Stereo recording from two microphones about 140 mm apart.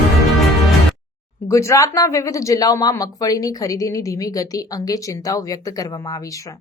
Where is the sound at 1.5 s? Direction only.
20° left (ahead or behind).